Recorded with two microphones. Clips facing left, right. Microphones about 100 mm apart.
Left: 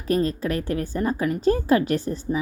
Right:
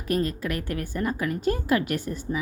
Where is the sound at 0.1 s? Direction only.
30° left (ahead or behind).